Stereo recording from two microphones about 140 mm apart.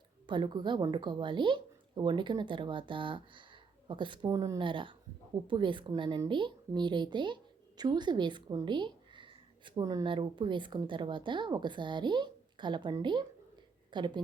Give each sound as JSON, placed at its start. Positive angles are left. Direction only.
{"t": 0.3, "sound": "a woman's voice", "side_deg": -35}
{"t": 4.3, "sound": "speech", "side_deg": -25}
{"t": 4.6, "sound": "a woman's voice", "side_deg": -35}